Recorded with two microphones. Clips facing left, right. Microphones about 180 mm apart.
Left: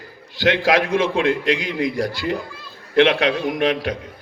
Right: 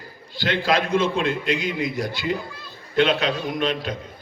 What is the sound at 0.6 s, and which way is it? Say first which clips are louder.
A man's voice: right 1 dB; 80° left.